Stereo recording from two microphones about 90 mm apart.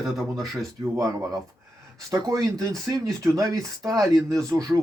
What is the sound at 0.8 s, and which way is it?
Speech, 35° right (ahead or behind).